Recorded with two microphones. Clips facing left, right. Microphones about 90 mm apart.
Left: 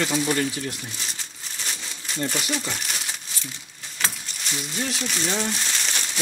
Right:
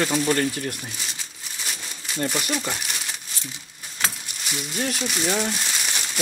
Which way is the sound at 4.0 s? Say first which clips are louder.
Right 1 dB; 5° right (ahead or behind).